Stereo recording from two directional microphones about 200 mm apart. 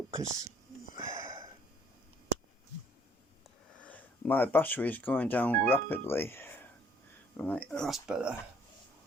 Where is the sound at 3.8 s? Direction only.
10° left (ahead or behind).